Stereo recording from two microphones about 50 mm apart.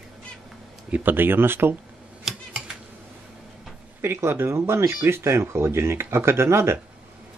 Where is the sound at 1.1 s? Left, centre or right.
Right.